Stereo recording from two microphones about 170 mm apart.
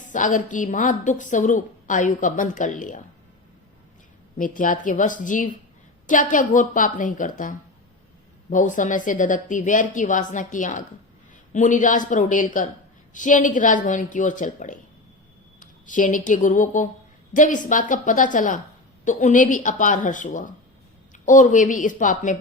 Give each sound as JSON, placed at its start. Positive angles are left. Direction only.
{"t": 0.0, "sound": "a woman's voice", "side_deg": 50}
{"t": 4.4, "sound": "a woman's voice", "side_deg": 50}